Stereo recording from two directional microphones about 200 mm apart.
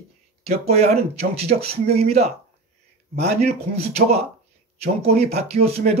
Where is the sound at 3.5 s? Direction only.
35° right (ahead or behind).